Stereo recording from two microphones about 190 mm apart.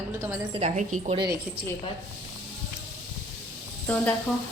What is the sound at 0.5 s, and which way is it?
Speech, 35° right (ahead or behind).